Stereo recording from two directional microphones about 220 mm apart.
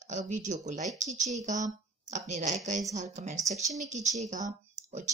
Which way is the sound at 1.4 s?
35° right (ahead or behind).